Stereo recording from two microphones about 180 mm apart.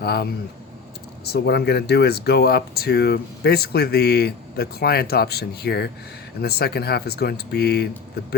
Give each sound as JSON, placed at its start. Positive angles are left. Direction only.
{"t": 0.0, "sound": "speech", "side_deg": 60}